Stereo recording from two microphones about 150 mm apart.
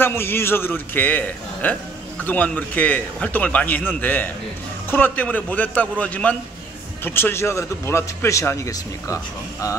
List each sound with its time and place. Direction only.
0.0 s a man's voice: 15° left (ahead or behind)